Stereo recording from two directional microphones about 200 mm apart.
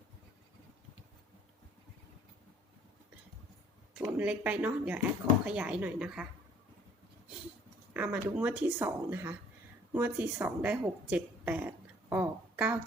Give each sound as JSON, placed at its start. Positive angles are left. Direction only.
{"t": 3.9, "sound": "speech", "side_deg": -10}
{"t": 7.9, "sound": "speech", "side_deg": -10}